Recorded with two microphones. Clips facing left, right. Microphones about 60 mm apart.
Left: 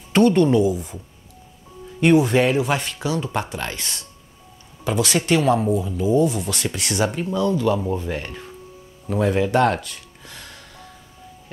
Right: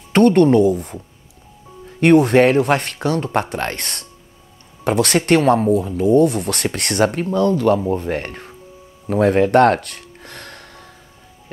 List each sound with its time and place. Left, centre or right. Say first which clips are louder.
0.1 s speech: right 4 dB; right
9.0 s gasp: right 5 dB; right